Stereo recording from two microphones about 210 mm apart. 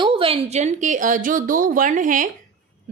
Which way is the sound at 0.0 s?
25° right (ahead or behind).